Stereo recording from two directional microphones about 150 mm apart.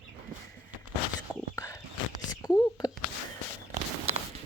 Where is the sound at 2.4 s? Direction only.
25° left (ahead or behind).